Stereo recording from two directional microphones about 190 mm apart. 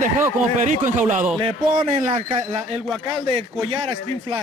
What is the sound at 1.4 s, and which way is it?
A man's voice, 30° right (ahead or behind).